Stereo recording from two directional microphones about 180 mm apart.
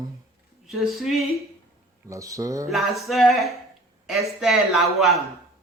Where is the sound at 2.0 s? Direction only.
20° right (ahead or behind).